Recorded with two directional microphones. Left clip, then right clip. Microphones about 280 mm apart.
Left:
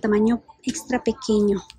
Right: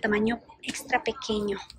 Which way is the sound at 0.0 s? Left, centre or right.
Centre.